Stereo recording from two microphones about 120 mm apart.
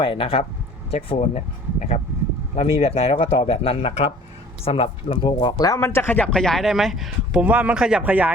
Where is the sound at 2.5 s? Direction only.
60° left (ahead or behind).